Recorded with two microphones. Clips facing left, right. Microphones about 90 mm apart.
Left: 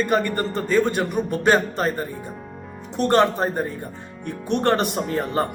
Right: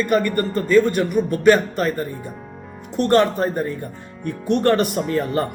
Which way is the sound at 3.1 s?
30° left (ahead or behind).